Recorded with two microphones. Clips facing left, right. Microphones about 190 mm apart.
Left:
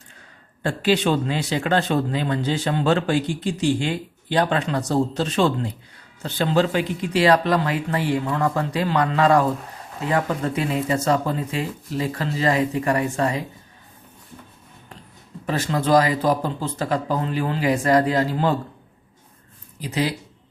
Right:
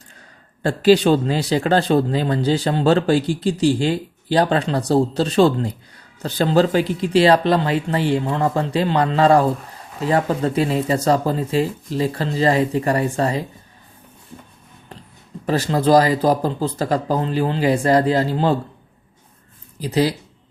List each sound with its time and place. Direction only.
0.6 s a man's voice: 35° right (ahead or behind)
15.4 s a man's voice: 35° right (ahead or behind)
19.8 s a man's voice: 35° right (ahead or behind)